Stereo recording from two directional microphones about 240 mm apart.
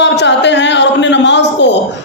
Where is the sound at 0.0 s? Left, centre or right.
Left.